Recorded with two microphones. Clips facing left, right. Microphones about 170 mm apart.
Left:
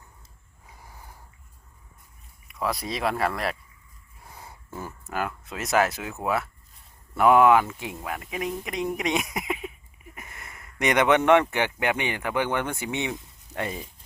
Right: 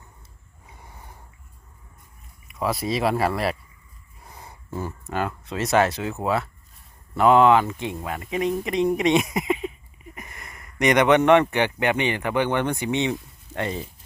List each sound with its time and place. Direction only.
2.5 s speech: centre (ahead or behind)
4.7 s speech: 15° right (ahead or behind)
5.0 s speech: 5° left (ahead or behind)
7.3 s speech: 10° left (ahead or behind)
10.2 s a sound: 15° right (ahead or behind)
11.2 s speech: 10° left (ahead or behind)
12.5 s speech: 15° right (ahead or behind)
12.8 s speech: 10° left (ahead or behind)
13.6 s speech: 25° right (ahead or behind)